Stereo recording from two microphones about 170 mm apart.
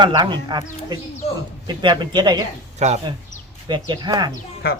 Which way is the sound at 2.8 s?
40° right (ahead or behind).